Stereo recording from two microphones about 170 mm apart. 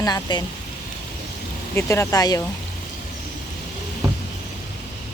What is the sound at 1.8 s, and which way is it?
Speech, 15° left (ahead or behind).